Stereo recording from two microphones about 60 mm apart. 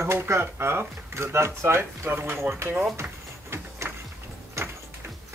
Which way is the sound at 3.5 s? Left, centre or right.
Right.